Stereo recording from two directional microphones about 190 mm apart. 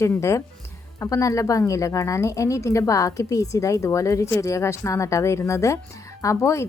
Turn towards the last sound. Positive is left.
turn(degrees=15)  # may be behind; listen again after turning